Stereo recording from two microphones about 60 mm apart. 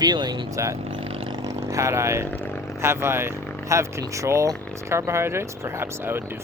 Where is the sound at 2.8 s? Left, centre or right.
Right.